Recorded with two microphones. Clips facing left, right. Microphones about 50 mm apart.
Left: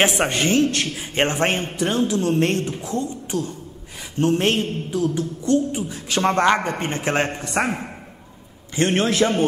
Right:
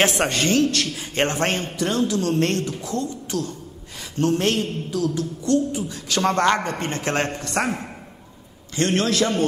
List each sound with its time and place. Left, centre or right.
0.0 s a woman's voice: left